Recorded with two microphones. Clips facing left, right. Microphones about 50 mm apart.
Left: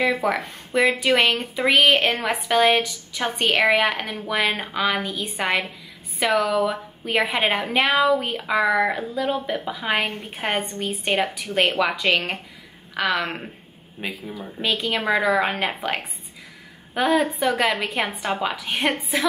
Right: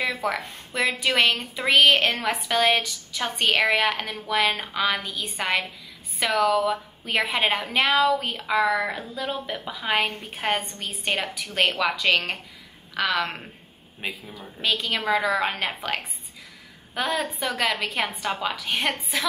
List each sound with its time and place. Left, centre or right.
0.2 s a woman's voice: centre
2.1 s a woman's voice: left
2.4 s a woman's voice: centre
14.8 s a woman's voice: centre